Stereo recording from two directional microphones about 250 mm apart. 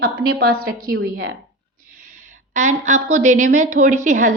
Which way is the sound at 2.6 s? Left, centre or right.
Right.